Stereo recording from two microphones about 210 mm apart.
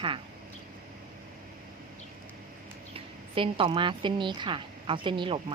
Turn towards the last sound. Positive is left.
turn(degrees=-25)  # may be behind; listen again after turning